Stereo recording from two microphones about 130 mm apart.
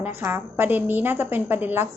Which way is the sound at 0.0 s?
15° right (ahead or behind).